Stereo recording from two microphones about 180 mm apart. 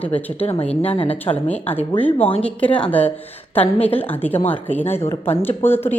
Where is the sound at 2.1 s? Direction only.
30° left (ahead or behind).